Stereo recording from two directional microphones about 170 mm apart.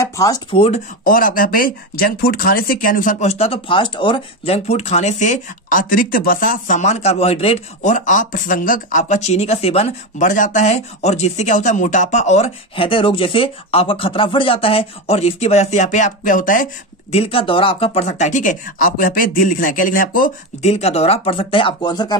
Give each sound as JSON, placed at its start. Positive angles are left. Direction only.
{"t": 0.0, "sound": "a sound", "side_deg": 20}
{"t": 0.5, "sound": "speech", "side_deg": 35}
{"t": 1.0, "sound": "speech", "side_deg": 55}
{"t": 17.1, "sound": "speech", "side_deg": 35}
{"t": 20.6, "sound": "speech", "side_deg": 40}